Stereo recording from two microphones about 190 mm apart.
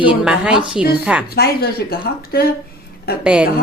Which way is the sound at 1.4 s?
55° left (ahead or behind).